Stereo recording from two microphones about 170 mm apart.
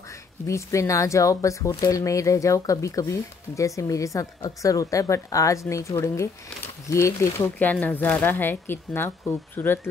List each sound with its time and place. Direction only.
0.5 s speech: 15° left (ahead or behind)